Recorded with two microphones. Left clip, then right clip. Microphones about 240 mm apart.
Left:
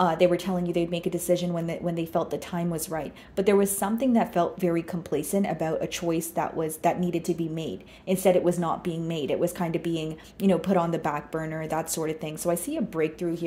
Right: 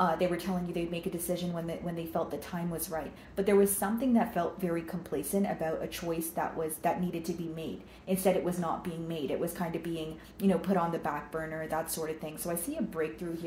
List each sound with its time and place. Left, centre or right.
0.0 s a woman's voice: left